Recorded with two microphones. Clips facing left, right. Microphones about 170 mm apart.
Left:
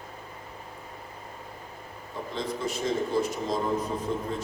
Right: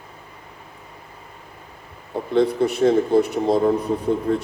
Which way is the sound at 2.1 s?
60° right (ahead or behind).